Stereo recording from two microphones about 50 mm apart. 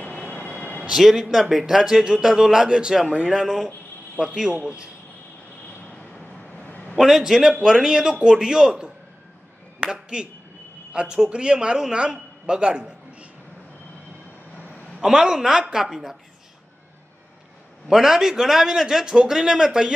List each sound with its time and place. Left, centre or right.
0.0 s vehicle: left
0.8 s a man's voice: centre
4.2 s a man's voice: right
6.5 s a sound: left
7.0 s a man's voice: centre
9.8 s a sound: centre
10.9 s a man's voice: right
15.0 s a man's voice: centre
17.8 s a man's voice: centre